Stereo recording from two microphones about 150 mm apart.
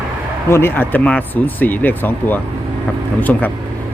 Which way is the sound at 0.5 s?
15° left (ahead or behind).